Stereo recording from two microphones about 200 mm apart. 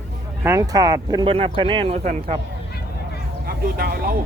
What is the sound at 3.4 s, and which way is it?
Speech, 45° right (ahead or behind).